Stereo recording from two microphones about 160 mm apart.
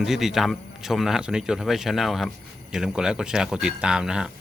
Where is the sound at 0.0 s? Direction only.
Centre (ahead or behind).